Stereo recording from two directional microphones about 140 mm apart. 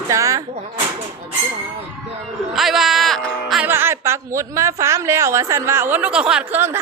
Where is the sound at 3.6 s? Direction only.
15° right (ahead or behind).